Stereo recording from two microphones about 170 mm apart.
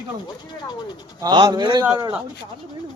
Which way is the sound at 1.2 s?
25° right (ahead or behind).